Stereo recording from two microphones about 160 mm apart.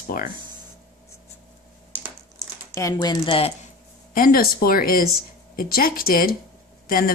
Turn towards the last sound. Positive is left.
turn(degrees=65)  # may be behind; listen again after turning